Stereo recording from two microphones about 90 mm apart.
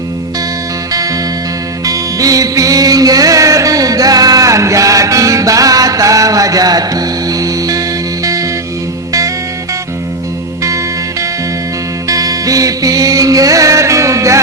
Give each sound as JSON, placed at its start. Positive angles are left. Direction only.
{"t": 1.8, "sound": "music", "side_deg": -40}
{"t": 12.0, "sound": "music", "side_deg": -40}